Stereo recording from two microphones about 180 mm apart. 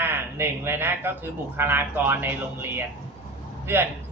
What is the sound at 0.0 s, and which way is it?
Speech, 15° right (ahead or behind).